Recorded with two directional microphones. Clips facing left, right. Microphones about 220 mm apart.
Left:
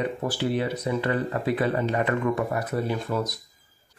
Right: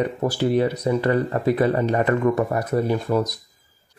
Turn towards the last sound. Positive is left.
turn(degrees=-40)  # may be behind; listen again after turning